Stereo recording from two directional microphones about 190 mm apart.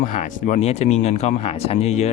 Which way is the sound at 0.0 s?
40° left (ahead or behind).